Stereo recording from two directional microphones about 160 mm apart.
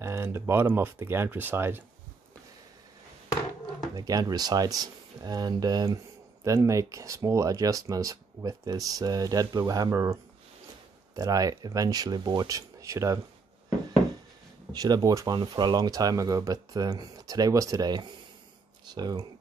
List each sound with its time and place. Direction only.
0.0 s speech: 15° right (ahead or behind)
3.9 s speech: 25° right (ahead or behind)
11.1 s speech: 20° right (ahead or behind)
14.7 s speech: 25° right (ahead or behind)